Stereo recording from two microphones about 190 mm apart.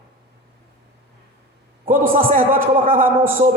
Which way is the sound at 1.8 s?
45° right (ahead or behind).